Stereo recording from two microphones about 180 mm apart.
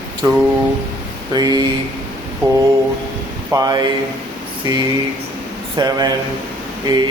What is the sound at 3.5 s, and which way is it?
Speech, 20° right (ahead or behind).